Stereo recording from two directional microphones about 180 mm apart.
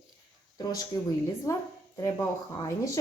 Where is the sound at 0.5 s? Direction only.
20° left (ahead or behind).